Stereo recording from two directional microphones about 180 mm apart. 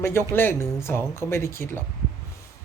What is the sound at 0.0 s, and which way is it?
Speech, 15° left (ahead or behind).